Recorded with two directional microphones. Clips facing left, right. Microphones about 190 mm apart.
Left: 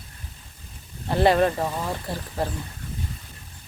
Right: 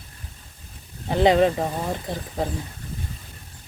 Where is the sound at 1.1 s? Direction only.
15° right (ahead or behind).